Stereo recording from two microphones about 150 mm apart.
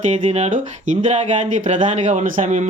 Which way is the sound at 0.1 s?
45° right (ahead or behind).